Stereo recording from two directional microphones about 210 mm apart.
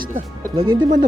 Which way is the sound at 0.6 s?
20° right (ahead or behind).